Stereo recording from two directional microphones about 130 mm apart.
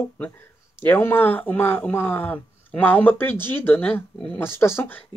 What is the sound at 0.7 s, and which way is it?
Speech, 20° left (ahead or behind).